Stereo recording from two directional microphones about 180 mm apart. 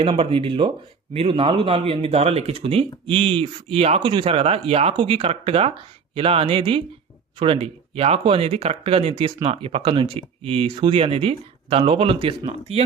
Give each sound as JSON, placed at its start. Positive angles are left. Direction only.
{"t": 0.0, "sound": "speech", "side_deg": -30}